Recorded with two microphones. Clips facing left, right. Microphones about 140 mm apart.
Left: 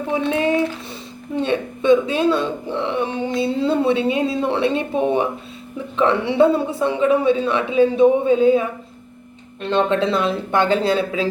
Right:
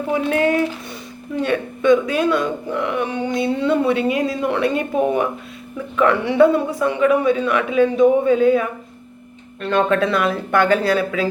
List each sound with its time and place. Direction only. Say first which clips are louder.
0.2 s speech: right 1 dB; 20° left (ahead or behind)
9.6 s speech: right 1 dB; 25° left (ahead or behind)